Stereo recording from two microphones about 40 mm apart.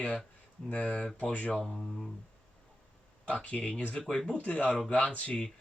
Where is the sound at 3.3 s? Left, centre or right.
Left.